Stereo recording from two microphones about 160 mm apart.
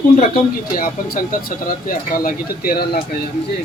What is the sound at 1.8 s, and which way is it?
Speech, 60° left (ahead or behind).